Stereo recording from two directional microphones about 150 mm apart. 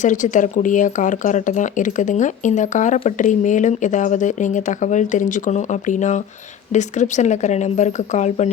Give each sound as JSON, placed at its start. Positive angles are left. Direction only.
{"t": 0.0, "sound": "a woman's voice", "side_deg": 55}